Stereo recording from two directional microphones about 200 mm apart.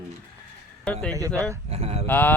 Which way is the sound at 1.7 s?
30° right (ahead or behind).